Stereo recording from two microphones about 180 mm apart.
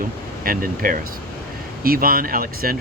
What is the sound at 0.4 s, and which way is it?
Speech, 50° right (ahead or behind).